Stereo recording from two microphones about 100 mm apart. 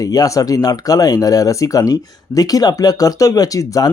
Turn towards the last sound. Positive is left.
turn(degrees=35)  # may be behind; listen again after turning